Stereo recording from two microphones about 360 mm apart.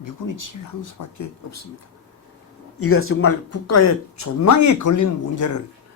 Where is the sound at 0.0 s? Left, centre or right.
Left.